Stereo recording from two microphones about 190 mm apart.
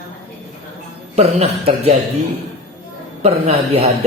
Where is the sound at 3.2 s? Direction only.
35° right (ahead or behind).